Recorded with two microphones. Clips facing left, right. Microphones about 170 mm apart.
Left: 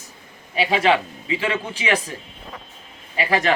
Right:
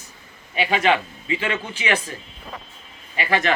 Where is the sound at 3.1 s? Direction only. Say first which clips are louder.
Left 1 dB; 35° left (ahead or behind).